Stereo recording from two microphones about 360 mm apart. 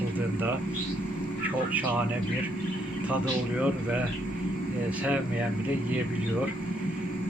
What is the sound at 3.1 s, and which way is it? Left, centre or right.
Speech, centre.